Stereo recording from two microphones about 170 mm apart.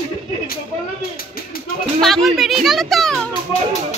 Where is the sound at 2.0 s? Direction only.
Centre (ahead or behind).